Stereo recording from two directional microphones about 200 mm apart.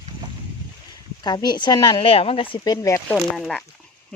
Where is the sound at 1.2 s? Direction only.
20° left (ahead or behind).